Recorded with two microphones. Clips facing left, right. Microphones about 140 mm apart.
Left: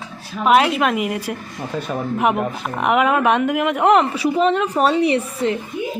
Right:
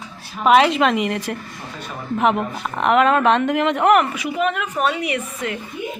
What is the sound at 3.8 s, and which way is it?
Speech, 20° left (ahead or behind).